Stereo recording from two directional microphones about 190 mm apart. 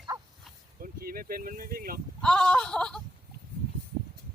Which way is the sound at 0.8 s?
50° right (ahead or behind).